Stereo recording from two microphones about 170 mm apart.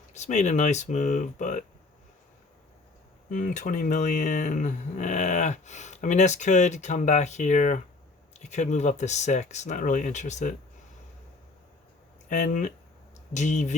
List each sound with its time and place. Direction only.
0.1 s speech: 45° left (ahead or behind)
3.2 s speech: 50° left (ahead or behind)
12.3 s speech: 50° left (ahead or behind)